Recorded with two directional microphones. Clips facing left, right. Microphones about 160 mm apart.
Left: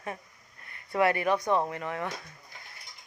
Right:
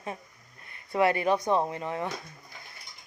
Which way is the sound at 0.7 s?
25° right (ahead or behind).